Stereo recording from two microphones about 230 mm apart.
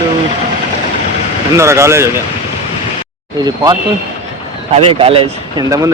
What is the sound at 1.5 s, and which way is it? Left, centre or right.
Speech, centre.